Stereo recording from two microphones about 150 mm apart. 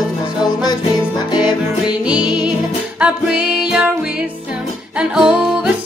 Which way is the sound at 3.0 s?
5° right (ahead or behind).